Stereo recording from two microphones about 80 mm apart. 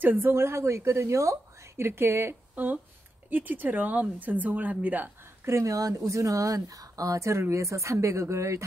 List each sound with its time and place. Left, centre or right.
0.0 s a woman's voice: right